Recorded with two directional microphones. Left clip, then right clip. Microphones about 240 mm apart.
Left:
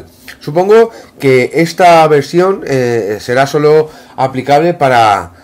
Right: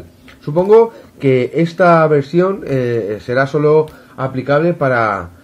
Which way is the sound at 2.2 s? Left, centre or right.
Left.